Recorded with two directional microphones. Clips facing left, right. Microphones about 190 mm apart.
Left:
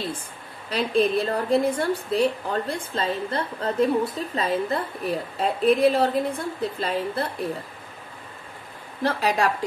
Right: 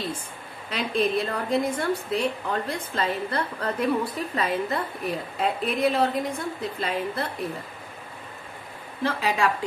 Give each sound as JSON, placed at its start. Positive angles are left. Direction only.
{"t": 0.7, "sound": "a woman's voice", "side_deg": 35}
{"t": 9.0, "sound": "a woman's voice", "side_deg": 40}